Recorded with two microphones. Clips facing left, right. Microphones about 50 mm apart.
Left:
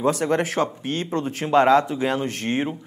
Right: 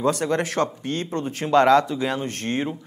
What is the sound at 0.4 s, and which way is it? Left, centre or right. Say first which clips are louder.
Speech: left 1 dB; left.